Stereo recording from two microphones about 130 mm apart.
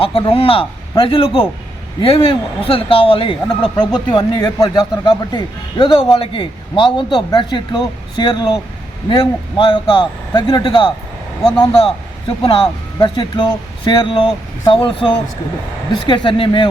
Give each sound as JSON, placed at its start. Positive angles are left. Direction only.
{"t": 0.0, "sound": "a man's voice", "side_deg": 45}